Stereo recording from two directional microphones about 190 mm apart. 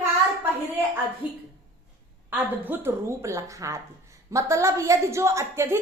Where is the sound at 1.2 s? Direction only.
5° right (ahead or behind).